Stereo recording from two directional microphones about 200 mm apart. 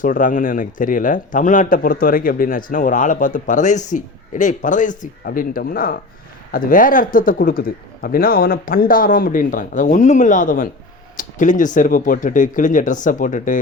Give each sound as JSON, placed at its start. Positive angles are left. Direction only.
{"t": 0.0, "sound": "a man's voice", "side_deg": 40}